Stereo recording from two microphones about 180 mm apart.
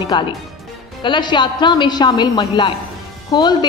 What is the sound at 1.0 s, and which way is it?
A woman's voice, 25° left (ahead or behind).